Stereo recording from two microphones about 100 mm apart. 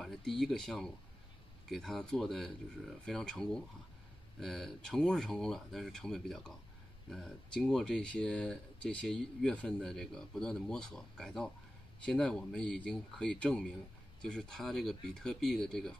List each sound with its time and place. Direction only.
0.0 s speech: centre (ahead or behind)